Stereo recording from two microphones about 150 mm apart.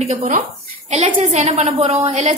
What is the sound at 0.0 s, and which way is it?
A woman's voice, 50° right (ahead or behind).